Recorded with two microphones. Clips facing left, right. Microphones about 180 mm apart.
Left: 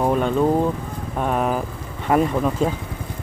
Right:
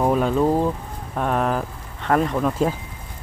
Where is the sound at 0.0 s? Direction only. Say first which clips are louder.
Even; centre (ahead or behind).